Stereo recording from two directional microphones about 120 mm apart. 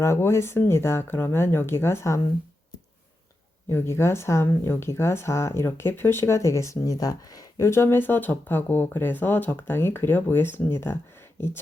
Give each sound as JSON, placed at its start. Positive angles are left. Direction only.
{"t": 0.0, "sound": "speech", "side_deg": 20}
{"t": 3.7, "sound": "speech", "side_deg": 20}
{"t": 11.3, "sound": "a sound", "side_deg": 20}